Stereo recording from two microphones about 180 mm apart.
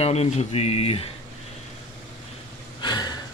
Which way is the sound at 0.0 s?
35° left (ahead or behind).